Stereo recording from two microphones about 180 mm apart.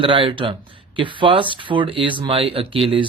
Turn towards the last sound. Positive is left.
turn(degrees=-30)  # may be behind; listen again after turning